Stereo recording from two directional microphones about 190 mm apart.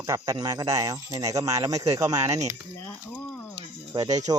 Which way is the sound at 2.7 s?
10° left (ahead or behind).